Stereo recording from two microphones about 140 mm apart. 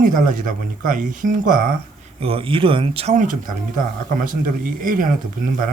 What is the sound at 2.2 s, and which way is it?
Speech, 40° right (ahead or behind).